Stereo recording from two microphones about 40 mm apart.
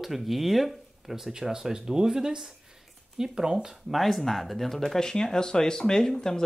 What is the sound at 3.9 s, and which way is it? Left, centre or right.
Speech, centre.